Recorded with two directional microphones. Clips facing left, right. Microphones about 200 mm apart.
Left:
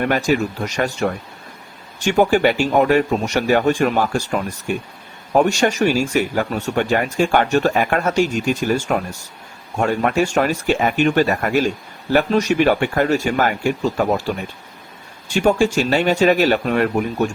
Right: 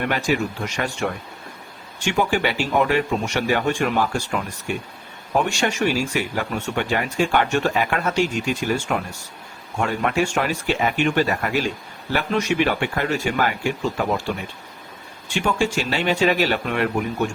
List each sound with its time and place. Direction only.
0.1 s speech: 40° left (ahead or behind)
5.4 s speech: 40° left (ahead or behind)
9.7 s speech: 45° left (ahead or behind)
15.3 s speech: 40° left (ahead or behind)